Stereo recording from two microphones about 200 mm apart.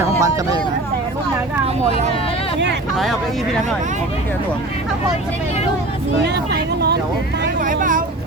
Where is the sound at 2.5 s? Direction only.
60° right (ahead or behind).